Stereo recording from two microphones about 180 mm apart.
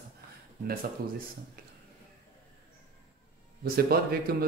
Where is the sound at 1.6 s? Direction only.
60° right (ahead or behind).